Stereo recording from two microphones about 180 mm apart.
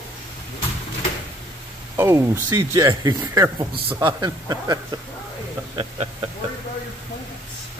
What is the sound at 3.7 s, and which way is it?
A man's voice, 25° right (ahead or behind).